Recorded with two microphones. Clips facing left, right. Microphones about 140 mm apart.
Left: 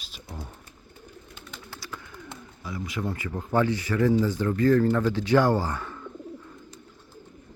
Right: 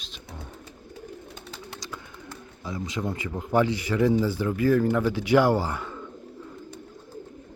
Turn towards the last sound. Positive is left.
turn(degrees=-15)  # may be behind; listen again after turning